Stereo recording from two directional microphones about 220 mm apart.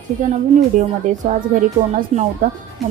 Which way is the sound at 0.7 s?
35° right (ahead or behind).